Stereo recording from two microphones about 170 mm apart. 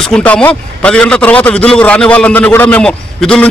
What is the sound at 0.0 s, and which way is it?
A man's voice, 5° left (ahead or behind).